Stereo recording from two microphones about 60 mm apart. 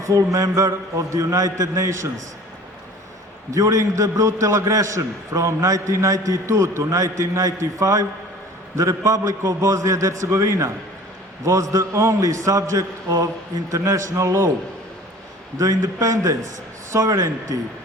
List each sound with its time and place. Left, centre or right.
0.0 s a man's voice: right
3.5 s a man's voice: right
15.5 s a man's voice: right